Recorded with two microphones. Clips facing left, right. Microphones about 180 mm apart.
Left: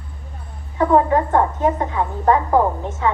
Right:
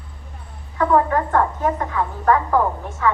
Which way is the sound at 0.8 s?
20° left (ahead or behind).